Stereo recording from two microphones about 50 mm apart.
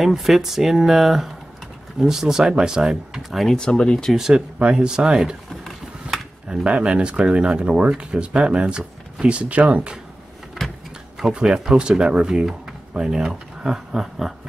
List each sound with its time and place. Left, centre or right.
0.0 s speech: centre
3.2 s speech: centre
3.5 s speech: centre
4.1 s speech: centre
4.6 s speech: centre
6.5 s speech: centre
11.4 s speech: centre